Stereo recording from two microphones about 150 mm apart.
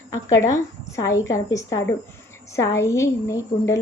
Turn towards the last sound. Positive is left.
turn(degrees=20)  # may be behind; listen again after turning